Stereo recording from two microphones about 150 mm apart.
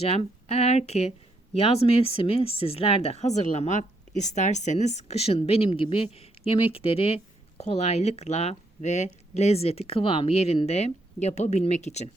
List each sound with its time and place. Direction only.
0.0 s speech: 45° left (ahead or behind)